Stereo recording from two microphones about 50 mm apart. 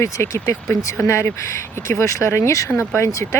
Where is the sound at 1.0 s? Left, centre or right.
Left.